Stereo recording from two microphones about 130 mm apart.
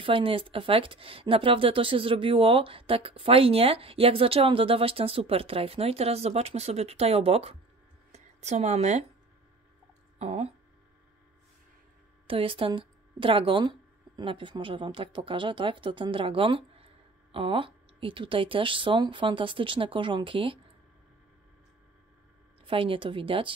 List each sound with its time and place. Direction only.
0.0 s speech: 45° right (ahead or behind)
8.1 s a sound: 60° right (ahead or behind)
10.1 s speech: 55° right (ahead or behind)
12.3 s speech: 45° right (ahead or behind)
22.7 s speech: 45° right (ahead or behind)